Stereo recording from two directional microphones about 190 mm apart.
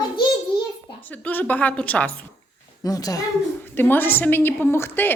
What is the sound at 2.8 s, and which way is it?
A woman's voice, 20° left (ahead or behind).